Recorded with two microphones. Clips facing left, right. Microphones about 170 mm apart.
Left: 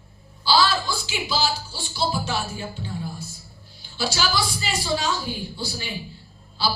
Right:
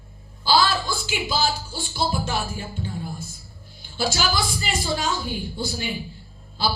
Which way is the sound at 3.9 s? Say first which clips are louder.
Right 1 dB; 50° right (ahead or behind).